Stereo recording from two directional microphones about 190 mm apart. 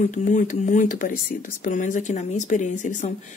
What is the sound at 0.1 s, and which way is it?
Speech, 40° left (ahead or behind).